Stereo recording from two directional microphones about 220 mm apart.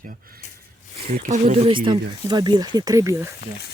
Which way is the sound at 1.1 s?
35° right (ahead or behind).